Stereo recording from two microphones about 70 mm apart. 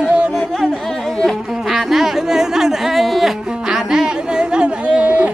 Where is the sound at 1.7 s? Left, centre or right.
Centre.